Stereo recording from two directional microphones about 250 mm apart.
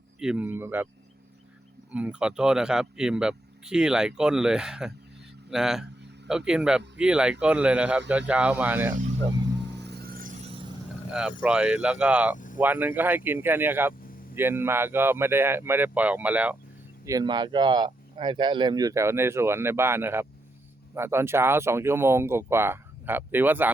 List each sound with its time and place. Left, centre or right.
0.2 s speech: centre
1.9 s speech: centre
9.8 s a sound: right
11.1 s speech: centre